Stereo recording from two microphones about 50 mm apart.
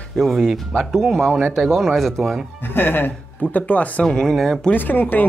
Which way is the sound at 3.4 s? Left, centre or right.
Left.